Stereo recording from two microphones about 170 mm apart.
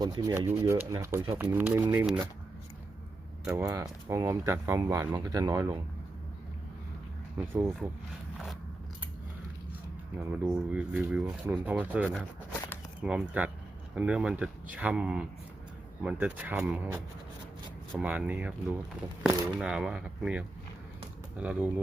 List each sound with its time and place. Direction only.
0.0 s speech: 20° right (ahead or behind)
3.4 s speech: 15° right (ahead or behind)
7.3 s speech: 15° right (ahead or behind)
10.3 s speech: 10° right (ahead or behind)
18.0 s speech: 10° right (ahead or behind)